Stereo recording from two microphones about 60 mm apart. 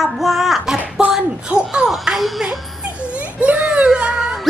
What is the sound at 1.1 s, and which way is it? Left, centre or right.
Speech, centre.